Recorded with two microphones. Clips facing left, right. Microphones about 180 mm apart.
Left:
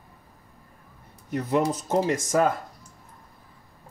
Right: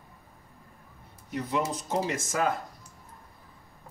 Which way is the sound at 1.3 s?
50° left (ahead or behind).